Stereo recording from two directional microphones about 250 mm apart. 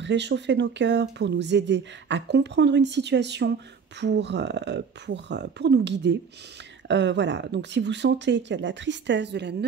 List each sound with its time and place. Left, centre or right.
0.0 s speech: right